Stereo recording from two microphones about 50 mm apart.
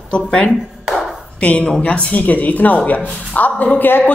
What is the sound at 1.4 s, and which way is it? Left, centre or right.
A woman's voice, left.